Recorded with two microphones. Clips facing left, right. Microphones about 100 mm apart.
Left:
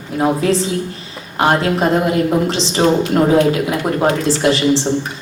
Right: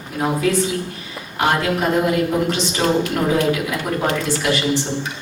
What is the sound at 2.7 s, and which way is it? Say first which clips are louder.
Speech: left 7 dB; 30° left (ahead or behind).